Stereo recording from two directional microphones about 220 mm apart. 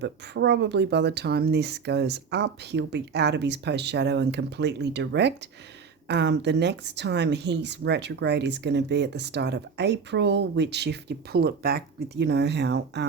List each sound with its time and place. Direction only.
0.0 s speech: 50° right (ahead or behind)